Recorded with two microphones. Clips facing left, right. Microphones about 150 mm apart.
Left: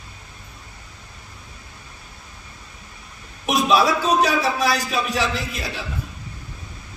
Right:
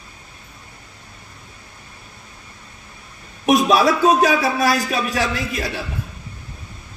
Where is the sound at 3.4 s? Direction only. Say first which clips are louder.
Right 3 dB; 45° right (ahead or behind).